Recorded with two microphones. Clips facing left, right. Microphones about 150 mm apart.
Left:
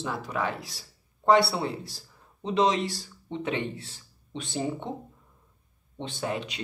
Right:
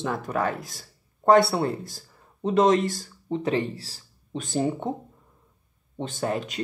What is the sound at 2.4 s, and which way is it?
Speech, 50° right (ahead or behind).